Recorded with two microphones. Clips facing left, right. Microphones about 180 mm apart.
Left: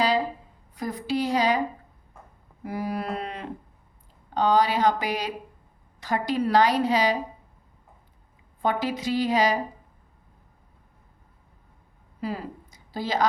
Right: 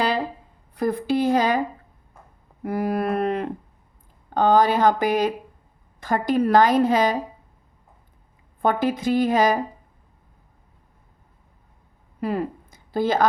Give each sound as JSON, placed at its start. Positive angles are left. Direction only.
{"t": 0.7, "sound": "a woman's voice", "side_deg": -60}
{"t": 2.6, "sound": "a woman's voice", "side_deg": -55}
{"t": 8.6, "sound": "a woman's voice", "side_deg": -50}
{"t": 12.2, "sound": "speech", "side_deg": -55}